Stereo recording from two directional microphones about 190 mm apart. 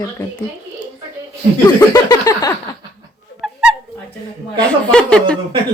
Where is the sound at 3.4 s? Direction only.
5° right (ahead or behind).